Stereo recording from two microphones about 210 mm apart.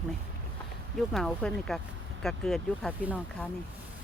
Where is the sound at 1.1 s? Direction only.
5° left (ahead or behind).